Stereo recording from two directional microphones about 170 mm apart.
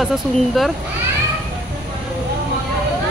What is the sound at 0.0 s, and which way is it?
Speech, centre (ahead or behind).